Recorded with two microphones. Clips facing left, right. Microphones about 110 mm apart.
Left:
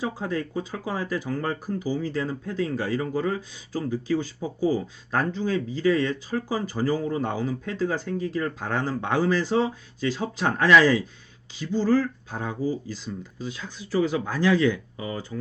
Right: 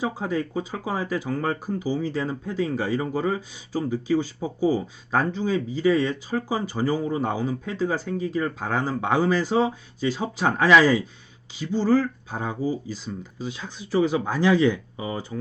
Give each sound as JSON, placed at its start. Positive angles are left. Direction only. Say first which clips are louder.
{"t": 0.0, "sound": "speech", "louder": "right 2 dB", "side_deg": -15}